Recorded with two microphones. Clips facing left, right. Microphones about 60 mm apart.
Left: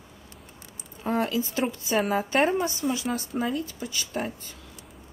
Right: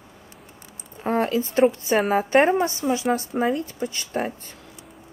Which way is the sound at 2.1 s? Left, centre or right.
Right.